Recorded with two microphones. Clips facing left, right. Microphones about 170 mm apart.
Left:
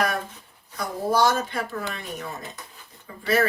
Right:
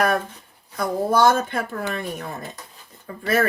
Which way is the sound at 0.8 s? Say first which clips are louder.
Right 3 dB; 55° right (ahead or behind).